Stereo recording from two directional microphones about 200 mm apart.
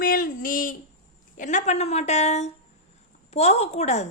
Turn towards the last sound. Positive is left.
turn(degrees=35)  # may be behind; listen again after turning